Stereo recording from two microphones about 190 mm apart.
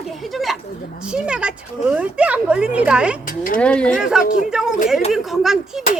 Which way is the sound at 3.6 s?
5° left (ahead or behind).